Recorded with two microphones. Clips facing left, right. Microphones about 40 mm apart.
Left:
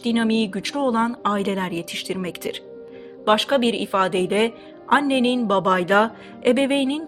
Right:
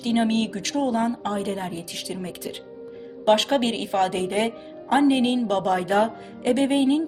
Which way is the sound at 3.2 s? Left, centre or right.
Left.